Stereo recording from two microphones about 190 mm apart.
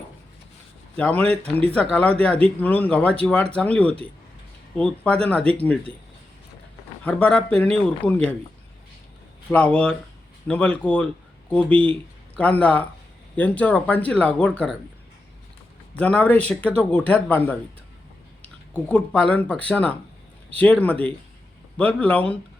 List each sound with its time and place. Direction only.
0.9 s speech: 5° left (ahead or behind)
1.4 s speech: 30° right (ahead or behind)
1.7 s speech: 5° left (ahead or behind)
7.0 s speech: 5° left (ahead or behind)
9.5 s speech: 5° left (ahead or behind)
16.0 s speech: 5° left (ahead or behind)
18.7 s speech: 5° left (ahead or behind)